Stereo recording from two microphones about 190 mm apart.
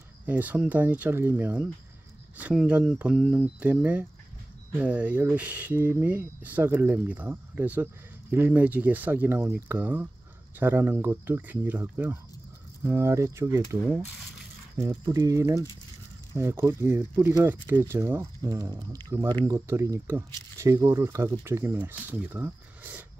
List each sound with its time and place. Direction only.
0.3 s speech: 10° right (ahead or behind)